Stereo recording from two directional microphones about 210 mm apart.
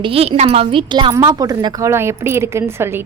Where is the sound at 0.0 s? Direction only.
30° right (ahead or behind).